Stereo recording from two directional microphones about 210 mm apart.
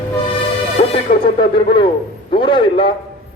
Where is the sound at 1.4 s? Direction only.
25° left (ahead or behind).